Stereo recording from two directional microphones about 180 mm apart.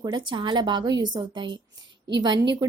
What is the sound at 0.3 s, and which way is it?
A woman's voice, 25° right (ahead or behind).